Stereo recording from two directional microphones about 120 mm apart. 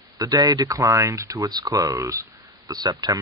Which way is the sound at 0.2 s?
30° right (ahead or behind).